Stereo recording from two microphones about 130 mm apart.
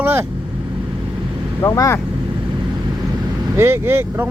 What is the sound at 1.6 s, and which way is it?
Speech, 25° left (ahead or behind).